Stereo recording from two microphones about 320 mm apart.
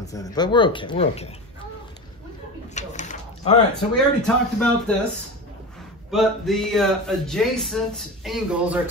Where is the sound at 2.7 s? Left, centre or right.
Left.